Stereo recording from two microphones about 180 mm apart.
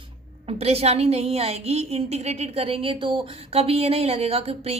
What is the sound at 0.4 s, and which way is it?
A woman's voice, 35° right (ahead or behind).